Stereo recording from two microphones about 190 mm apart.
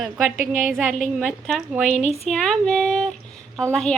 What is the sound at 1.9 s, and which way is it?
Speech, 35° left (ahead or behind).